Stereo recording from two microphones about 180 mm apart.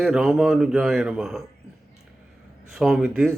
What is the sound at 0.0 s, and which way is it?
A man's voice, centre (ahead or behind).